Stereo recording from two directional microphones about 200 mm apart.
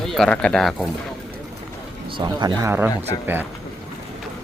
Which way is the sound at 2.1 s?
20° right (ahead or behind).